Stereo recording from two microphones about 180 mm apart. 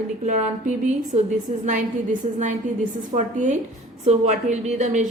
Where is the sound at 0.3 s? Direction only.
40° right (ahead or behind).